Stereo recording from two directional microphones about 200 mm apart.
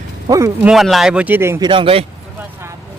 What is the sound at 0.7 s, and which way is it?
Speech, centre (ahead or behind).